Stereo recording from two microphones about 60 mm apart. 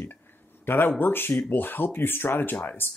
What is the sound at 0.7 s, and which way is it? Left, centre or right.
Speech, left.